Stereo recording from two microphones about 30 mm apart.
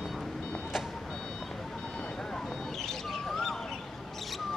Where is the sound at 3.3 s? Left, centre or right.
Centre.